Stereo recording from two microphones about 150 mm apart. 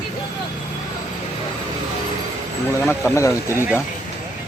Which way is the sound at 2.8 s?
15° left (ahead or behind).